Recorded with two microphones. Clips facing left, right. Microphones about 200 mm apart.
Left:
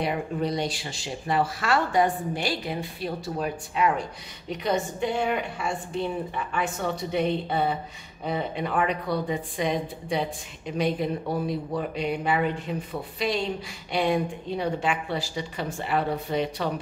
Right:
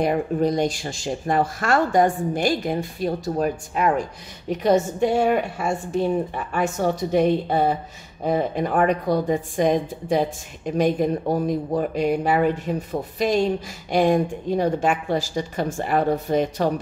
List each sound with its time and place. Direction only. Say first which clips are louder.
0.0 s a woman's voice: right 7 dB; 45° right (ahead or behind)